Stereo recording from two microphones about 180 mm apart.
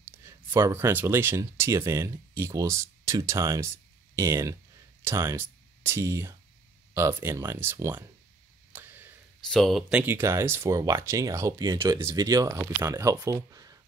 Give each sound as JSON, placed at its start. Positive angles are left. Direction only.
{"t": 0.2, "sound": "speech", "side_deg": -15}
{"t": 8.7, "sound": "a sound", "side_deg": -10}
{"t": 9.5, "sound": "speech", "side_deg": 0}